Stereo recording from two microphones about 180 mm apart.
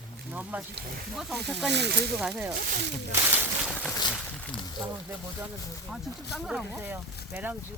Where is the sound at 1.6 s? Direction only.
70° right (ahead or behind).